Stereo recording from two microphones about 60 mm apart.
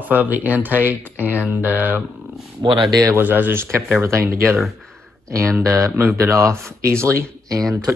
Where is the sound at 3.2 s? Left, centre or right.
Right.